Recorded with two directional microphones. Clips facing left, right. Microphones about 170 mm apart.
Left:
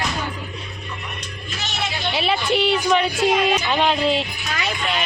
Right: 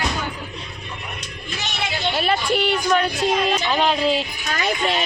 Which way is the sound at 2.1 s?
Centre (ahead or behind).